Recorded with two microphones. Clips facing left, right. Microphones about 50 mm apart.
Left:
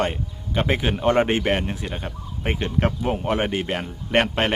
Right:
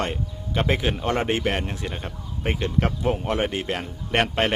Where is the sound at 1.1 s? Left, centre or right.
Left.